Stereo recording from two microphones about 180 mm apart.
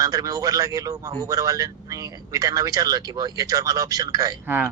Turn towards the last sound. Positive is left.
turn(degrees=-15)  # may be behind; listen again after turning